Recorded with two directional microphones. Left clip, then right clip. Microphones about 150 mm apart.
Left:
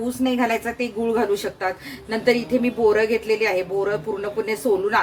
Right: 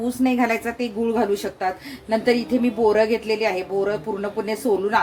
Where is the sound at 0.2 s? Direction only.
25° right (ahead or behind).